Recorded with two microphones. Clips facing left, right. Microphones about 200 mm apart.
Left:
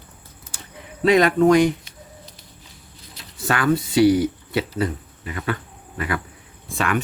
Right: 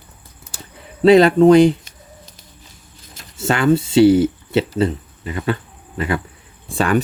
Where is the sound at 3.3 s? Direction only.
25° right (ahead or behind).